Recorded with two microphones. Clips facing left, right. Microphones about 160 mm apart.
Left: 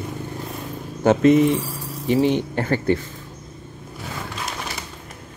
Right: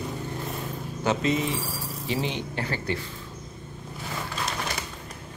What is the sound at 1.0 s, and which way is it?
Speech, 55° left (ahead or behind).